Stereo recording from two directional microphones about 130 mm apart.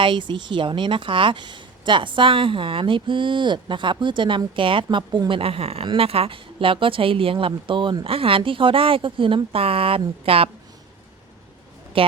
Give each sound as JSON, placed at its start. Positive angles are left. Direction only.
{"t": 0.0, "sound": "a woman's voice", "side_deg": -40}
{"t": 11.9, "sound": "a woman's voice", "side_deg": -45}